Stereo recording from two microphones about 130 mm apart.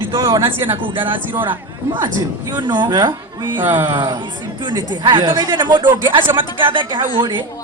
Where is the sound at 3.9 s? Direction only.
30° right (ahead or behind).